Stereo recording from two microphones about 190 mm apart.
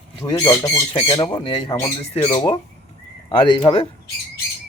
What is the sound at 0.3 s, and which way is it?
Speech, 20° left (ahead or behind).